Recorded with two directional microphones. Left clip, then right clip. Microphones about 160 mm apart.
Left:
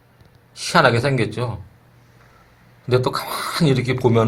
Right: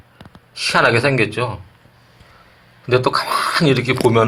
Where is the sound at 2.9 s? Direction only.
10° left (ahead or behind).